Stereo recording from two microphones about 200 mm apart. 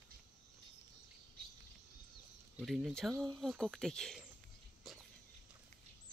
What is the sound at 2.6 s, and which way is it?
Speech, centre (ahead or behind).